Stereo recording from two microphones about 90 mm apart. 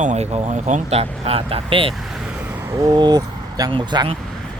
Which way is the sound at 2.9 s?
50° right (ahead or behind).